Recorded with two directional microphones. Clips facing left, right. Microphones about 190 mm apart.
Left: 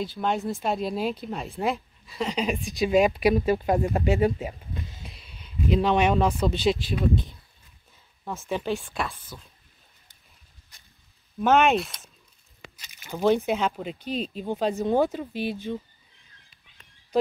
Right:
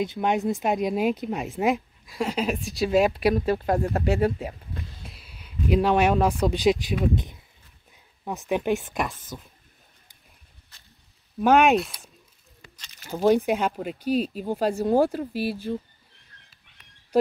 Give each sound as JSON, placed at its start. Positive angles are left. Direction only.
{"t": 0.0, "sound": "speech", "side_deg": -20}
{"t": 11.4, "sound": "speech", "side_deg": -10}
{"t": 11.7, "sound": "speech", "side_deg": 0}
{"t": 12.7, "sound": "a sound", "side_deg": 10}
{"t": 13.1, "sound": "speech", "side_deg": -10}